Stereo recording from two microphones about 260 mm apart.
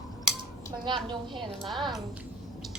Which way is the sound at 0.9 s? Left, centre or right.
Centre.